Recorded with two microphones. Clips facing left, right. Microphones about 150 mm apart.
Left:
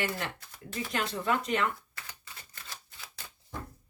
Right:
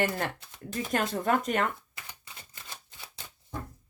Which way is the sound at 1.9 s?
15° right (ahead or behind).